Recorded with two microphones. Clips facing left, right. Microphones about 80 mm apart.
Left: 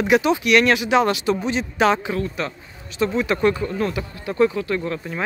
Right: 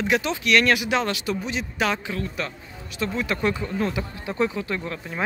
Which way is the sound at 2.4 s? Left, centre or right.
Centre.